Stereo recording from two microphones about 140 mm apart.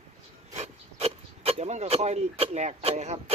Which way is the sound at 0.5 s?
50° right (ahead or behind).